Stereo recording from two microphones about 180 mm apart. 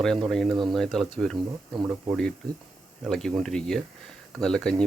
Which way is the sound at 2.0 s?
5° left (ahead or behind).